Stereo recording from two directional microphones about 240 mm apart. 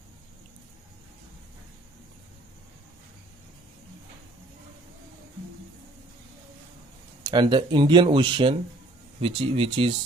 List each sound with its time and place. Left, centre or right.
7.3 s speech: centre